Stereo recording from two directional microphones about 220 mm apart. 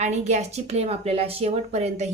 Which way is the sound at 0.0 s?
30° right (ahead or behind).